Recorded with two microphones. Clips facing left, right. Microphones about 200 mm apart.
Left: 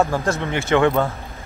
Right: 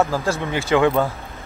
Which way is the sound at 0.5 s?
10° right (ahead or behind).